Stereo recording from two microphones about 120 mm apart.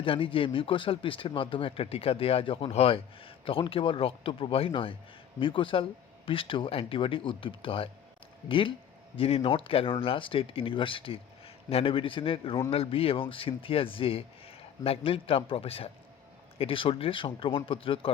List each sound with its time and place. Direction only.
0.0 s speech: 45° left (ahead or behind)